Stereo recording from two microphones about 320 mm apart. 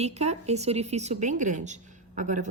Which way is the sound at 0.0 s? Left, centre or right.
Right.